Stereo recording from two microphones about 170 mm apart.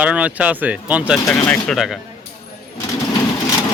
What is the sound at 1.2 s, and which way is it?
Speech, 5° left (ahead or behind).